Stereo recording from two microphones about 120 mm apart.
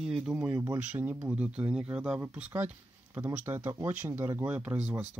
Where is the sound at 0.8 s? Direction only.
15° right (ahead or behind).